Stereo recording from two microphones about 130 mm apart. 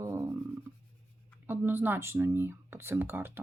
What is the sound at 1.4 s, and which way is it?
Speech, 15° right (ahead or behind).